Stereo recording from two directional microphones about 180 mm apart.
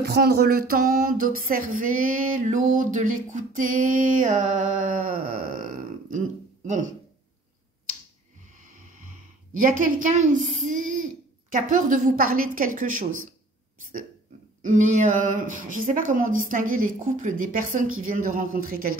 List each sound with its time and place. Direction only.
0.0 s speech: 60° right (ahead or behind)
9.6 s speech: 50° right (ahead or behind)
14.6 s speech: 45° right (ahead or behind)